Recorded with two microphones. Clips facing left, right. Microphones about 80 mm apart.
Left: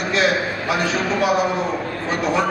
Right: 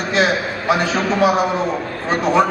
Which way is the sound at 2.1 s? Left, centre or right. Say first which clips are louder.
Right 5 dB; right.